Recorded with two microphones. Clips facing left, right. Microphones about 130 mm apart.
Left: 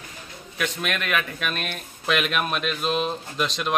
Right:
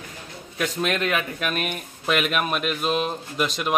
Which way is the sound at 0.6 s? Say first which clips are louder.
Right 4 dB; 35° right (ahead or behind).